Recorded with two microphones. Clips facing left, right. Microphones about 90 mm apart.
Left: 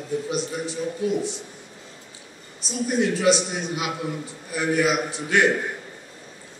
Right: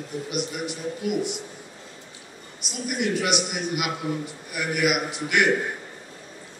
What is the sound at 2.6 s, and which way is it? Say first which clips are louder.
A man's voice: left 4 dB; 30° left (ahead or behind).